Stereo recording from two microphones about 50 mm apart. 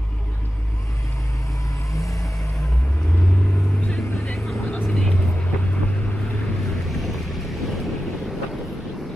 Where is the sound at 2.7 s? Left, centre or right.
Left; by 4.7 s centre.